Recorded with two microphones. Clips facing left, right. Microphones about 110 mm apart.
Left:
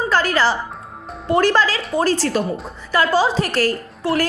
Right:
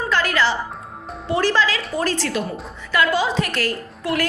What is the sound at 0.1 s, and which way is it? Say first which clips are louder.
Music: left 2 dB; 35° left (ahead or behind).